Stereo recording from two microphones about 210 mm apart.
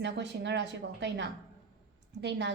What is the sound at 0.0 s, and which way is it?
A woman's voice, 55° right (ahead or behind).